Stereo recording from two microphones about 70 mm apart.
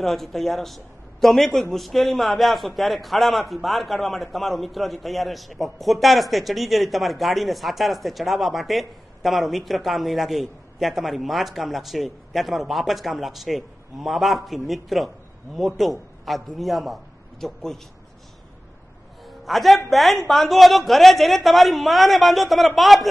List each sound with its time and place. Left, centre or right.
0.0 s a man's voice: centre
19.2 s a sound: centre
19.9 s a man's voice: centre